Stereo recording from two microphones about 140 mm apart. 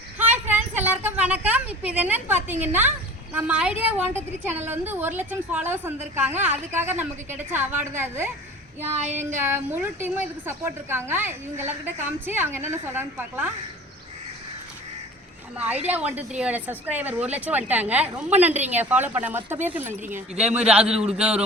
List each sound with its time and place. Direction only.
0.2 s a sound: 15° right (ahead or behind)
3.3 s a woman's voice: 10° right (ahead or behind)
9.4 s a woman's voice: 15° right (ahead or behind)
15.5 s a woman's voice: 10° right (ahead or behind)